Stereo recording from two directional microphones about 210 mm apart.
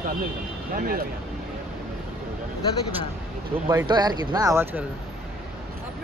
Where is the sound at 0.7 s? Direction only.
45° right (ahead or behind).